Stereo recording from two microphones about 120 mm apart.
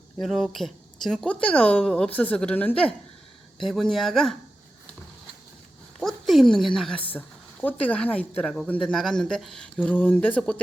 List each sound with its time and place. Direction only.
0.2 s speech: centre (ahead or behind)
3.7 s speech: centre (ahead or behind)
6.0 s a woman's voice: centre (ahead or behind)
7.0 s a woman's voice: 15° left (ahead or behind)